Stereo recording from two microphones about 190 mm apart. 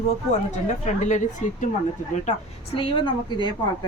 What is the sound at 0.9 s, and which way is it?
Speech, 40° left (ahead or behind).